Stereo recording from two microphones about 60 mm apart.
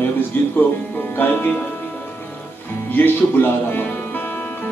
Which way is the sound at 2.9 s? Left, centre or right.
Left.